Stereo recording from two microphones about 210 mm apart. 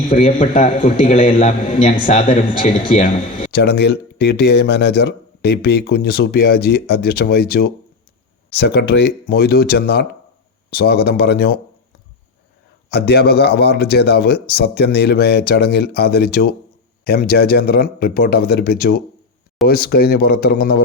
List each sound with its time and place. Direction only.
0.1 s a man's voice: 35° left (ahead or behind)
3.5 s speech: 50° left (ahead or behind)
12.9 s speech: 50° left (ahead or behind)